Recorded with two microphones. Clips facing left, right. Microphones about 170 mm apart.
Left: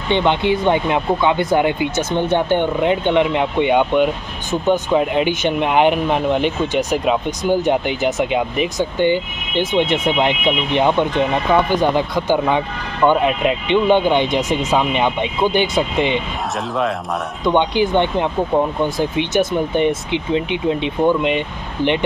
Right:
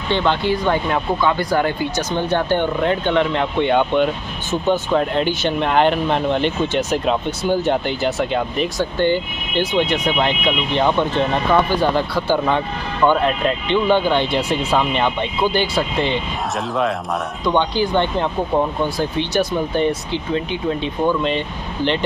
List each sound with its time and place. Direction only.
0.1 s speech: 20° left (ahead or behind)
17.5 s speech: 20° left (ahead or behind)
18.9 s speech: 20° left (ahead or behind)